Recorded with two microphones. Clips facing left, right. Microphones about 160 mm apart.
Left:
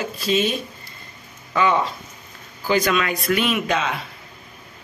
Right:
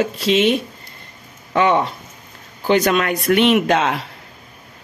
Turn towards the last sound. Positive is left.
turn(degrees=-80)